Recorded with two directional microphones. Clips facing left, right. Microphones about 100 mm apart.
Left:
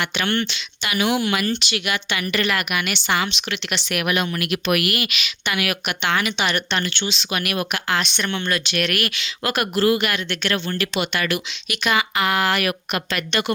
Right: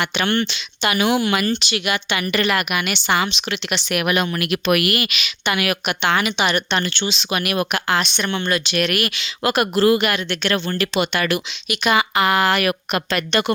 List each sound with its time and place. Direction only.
0.0 s speech: 25° right (ahead or behind)
0.9 s speech: 40° right (ahead or behind)
1.5 s speech: 25° right (ahead or behind)
3.1 s speech: 30° right (ahead or behind)
4.0 s speech: 45° right (ahead or behind)
5.5 s speech: 30° right (ahead or behind)
6.2 s a woman's voice: 15° right (ahead or behind)
6.8 s speech: 30° right (ahead or behind)
10.5 s speech: 40° right (ahead or behind)
11.7 s speech: 20° right (ahead or behind)